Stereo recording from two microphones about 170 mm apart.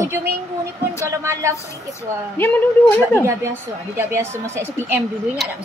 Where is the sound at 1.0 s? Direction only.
15° right (ahead or behind).